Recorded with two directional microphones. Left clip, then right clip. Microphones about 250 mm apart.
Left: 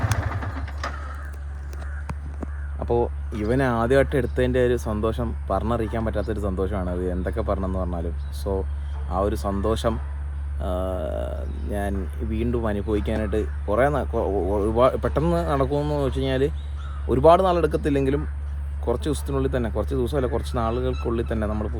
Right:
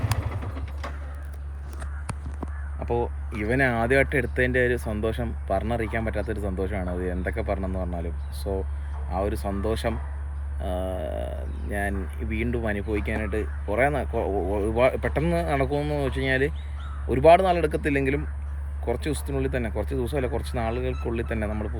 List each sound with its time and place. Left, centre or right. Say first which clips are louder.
2.8 s speech: left 4 dB; centre
19.3 s speech: left 3 dB; centre